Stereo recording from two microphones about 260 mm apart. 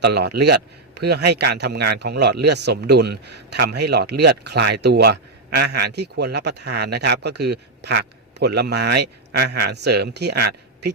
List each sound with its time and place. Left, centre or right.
0.0 s a man's voice: right